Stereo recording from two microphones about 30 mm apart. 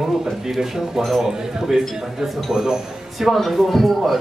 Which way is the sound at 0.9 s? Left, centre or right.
Centre.